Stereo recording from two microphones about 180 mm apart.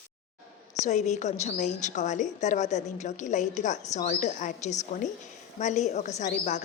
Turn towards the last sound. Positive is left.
turn(degrees=40)  # may be behind; listen again after turning